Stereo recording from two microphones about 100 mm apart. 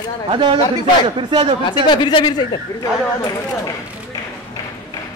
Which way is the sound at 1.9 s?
50° left (ahead or behind).